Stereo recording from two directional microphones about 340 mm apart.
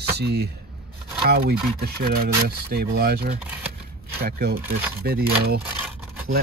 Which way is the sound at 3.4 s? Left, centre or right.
Centre.